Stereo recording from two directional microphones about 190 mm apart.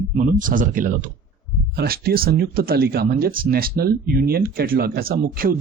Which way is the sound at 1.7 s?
55° right (ahead or behind).